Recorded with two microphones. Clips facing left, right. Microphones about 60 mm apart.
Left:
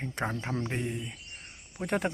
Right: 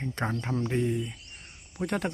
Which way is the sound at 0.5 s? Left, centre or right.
Centre.